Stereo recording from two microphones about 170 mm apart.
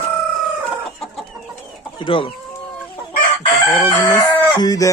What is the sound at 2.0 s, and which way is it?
Speech, 30° left (ahead or behind).